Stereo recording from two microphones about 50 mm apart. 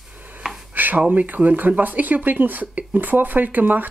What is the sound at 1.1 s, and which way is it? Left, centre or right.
Speech, right.